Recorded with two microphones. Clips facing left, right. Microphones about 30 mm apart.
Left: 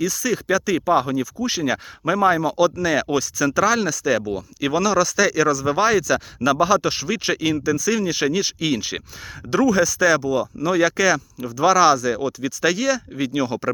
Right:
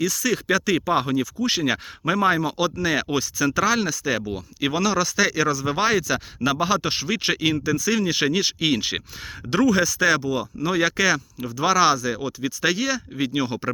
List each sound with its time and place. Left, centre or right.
0.0 s speech: right